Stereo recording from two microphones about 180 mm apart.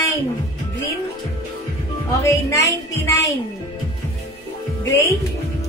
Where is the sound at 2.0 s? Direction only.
15° left (ahead or behind).